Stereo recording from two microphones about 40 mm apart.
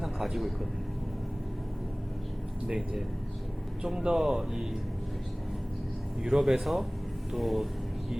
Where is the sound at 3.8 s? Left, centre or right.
Centre.